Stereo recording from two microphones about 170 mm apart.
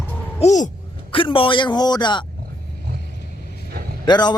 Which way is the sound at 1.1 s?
30° left (ahead or behind).